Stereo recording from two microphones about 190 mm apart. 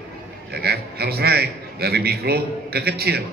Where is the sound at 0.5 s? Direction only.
55° right (ahead or behind).